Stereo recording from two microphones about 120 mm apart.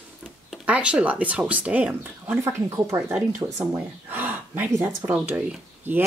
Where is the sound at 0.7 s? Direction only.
10° right (ahead or behind).